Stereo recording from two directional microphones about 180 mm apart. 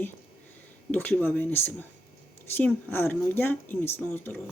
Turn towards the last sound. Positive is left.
turn(degrees=10)  # may be behind; listen again after turning